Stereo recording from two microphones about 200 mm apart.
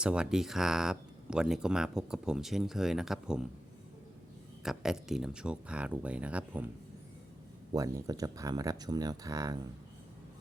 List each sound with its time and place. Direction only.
0.0 s speech: 5° right (ahead or behind)
4.6 s speech: centre (ahead or behind)
7.7 s speech: 15° right (ahead or behind)